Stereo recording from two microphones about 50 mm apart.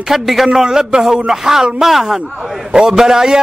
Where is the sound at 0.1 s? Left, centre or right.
Centre.